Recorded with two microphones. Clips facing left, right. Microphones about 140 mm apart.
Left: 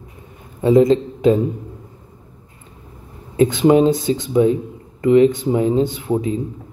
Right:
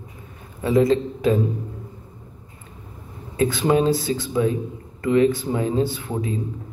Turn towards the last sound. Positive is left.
turn(degrees=25)  # may be behind; listen again after turning